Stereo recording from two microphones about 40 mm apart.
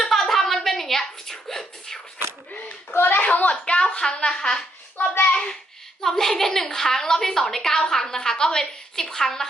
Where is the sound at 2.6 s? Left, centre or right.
Left.